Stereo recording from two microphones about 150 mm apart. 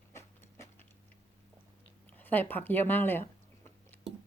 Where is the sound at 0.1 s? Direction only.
15° left (ahead or behind).